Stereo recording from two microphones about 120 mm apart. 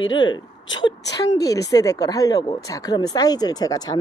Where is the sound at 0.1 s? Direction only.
40° left (ahead or behind).